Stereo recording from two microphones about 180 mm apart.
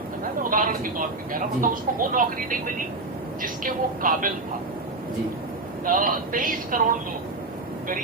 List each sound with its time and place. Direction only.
0.5 s speech: 50° right (ahead or behind)
5.8 s speech: 50° right (ahead or behind)